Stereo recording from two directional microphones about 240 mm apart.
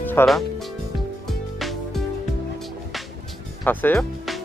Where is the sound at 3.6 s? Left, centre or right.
Centre.